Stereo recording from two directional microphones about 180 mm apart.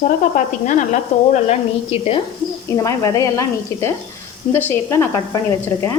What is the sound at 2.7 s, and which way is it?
Speech, 20° left (ahead or behind).